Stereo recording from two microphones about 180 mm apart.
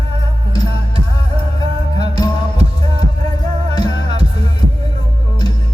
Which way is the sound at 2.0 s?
20° left (ahead or behind).